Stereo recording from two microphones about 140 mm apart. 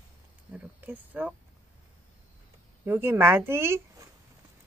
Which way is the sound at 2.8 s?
15° right (ahead or behind).